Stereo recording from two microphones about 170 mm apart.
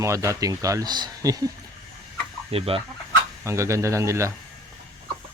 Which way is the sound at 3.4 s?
15° right (ahead or behind).